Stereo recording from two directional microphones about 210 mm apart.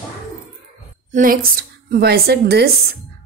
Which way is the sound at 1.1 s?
40° right (ahead or behind).